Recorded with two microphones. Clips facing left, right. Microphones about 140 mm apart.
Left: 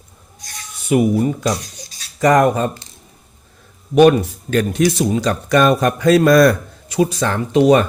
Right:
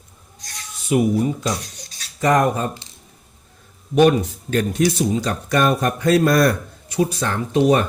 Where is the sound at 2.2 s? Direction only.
90° left.